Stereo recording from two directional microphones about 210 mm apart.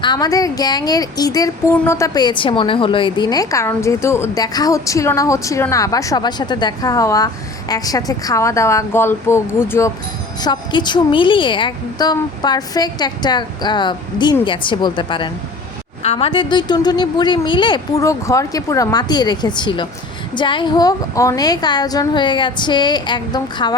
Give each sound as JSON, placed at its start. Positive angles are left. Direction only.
{"t": 0.0, "sound": "a woman's voice", "side_deg": 20}